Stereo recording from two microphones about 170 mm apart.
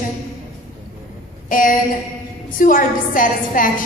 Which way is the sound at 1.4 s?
55° left (ahead or behind).